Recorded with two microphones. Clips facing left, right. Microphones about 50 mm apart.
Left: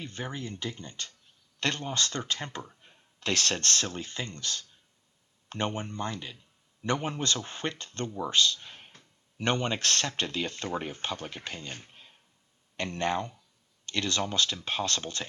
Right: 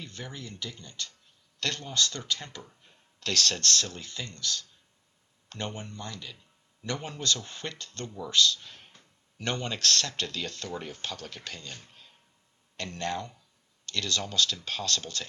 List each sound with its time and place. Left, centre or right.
0.0 s speech: left